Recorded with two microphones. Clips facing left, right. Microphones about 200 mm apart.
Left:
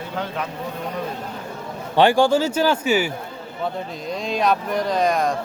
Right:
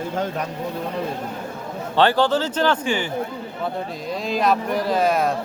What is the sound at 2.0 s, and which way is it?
Speech, 15° left (ahead or behind).